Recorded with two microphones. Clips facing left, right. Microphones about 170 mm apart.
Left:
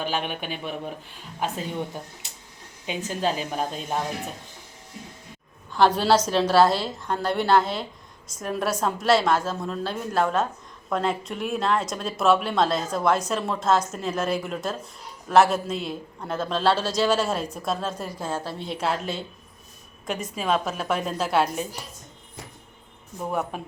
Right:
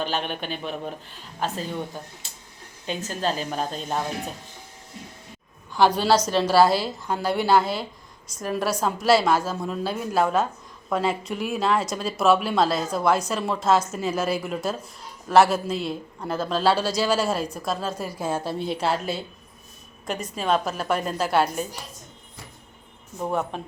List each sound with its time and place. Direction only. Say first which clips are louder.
0.0 s a woman's voice: right 1 dB; 10° left (ahead or behind)
5.7 s a woman's voice: even; centre (ahead or behind)
18.6 s a woman's voice: right 1 dB; centre (ahead or behind)
23.5 s a woman's voice: right 1 dB; 5° left (ahead or behind)